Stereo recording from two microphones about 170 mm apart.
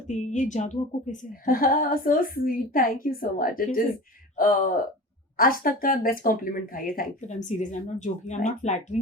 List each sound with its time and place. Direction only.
0.1 s a woman's voice: 45° left (ahead or behind)